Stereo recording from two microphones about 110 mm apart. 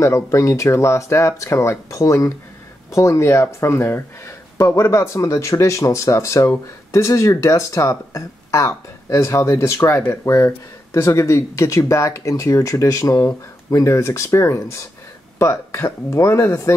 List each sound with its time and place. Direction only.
0.0 s speech: 30° left (ahead or behind)